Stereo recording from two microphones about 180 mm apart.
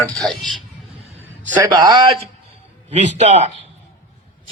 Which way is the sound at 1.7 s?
25° right (ahead or behind).